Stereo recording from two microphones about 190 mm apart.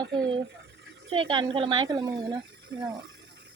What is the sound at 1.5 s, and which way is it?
Speech, 25° right (ahead or behind).